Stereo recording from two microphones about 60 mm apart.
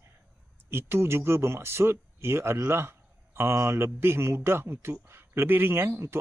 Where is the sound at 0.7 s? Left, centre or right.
Right.